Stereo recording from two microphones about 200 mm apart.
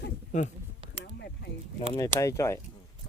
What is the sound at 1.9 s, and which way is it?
Speech, 15° left (ahead or behind).